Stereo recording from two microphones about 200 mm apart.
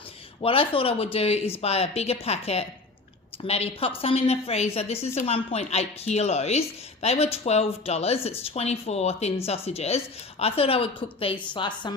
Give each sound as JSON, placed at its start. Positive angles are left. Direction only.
{"t": 0.4, "sound": "a woman's voice", "side_deg": 25}